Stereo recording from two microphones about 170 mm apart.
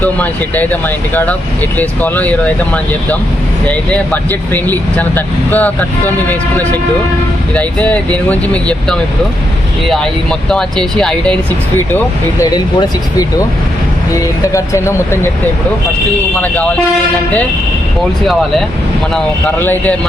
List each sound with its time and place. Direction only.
0.0 s speech: 10° left (ahead or behind)
3.7 s speech: 10° left (ahead or behind)
7.5 s speech: 10° left (ahead or behind)
10.5 s speech: 5° left (ahead or behind)
12.4 s speech: 20° left (ahead or behind)
14.5 s speech: 15° left (ahead or behind)
19.1 s speech: 10° left (ahead or behind)